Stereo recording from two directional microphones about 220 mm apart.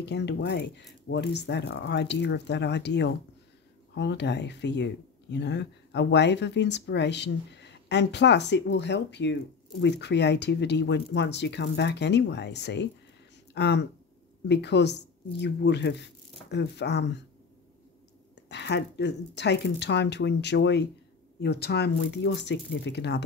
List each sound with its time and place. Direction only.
0.0 s speech: 50° left (ahead or behind)
18.3 s speech: 50° left (ahead or behind)